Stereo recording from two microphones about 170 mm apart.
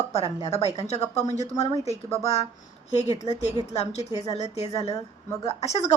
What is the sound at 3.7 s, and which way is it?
Speech, 40° left (ahead or behind).